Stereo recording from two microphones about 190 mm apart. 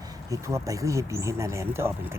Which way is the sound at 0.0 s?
20° right (ahead or behind).